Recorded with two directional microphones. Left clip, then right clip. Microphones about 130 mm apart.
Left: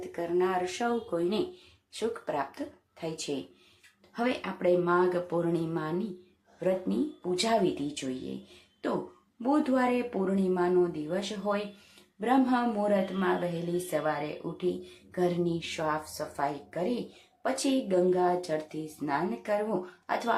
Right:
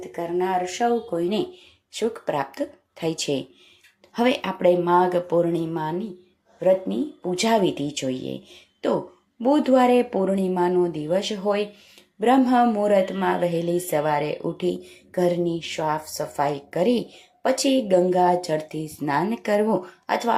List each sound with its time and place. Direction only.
0.0 s speech: 15° right (ahead or behind)
1.1 s a woman's voice: 25° right (ahead or behind)
7.4 s speech: 25° right (ahead or behind)
9.4 s a woman's voice: 25° right (ahead or behind)
15.4 s a woman's voice: 10° right (ahead or behind); by 19.5 s 40° right (ahead or behind)
20.1 s speech: 25° right (ahead or behind)